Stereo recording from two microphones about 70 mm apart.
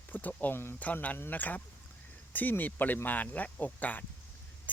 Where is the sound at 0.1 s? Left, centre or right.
Left.